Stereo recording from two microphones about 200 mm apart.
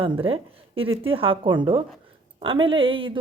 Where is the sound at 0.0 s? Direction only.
25° right (ahead or behind).